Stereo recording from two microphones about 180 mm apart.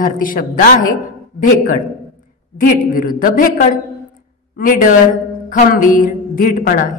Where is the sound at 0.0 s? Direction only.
50° left (ahead or behind).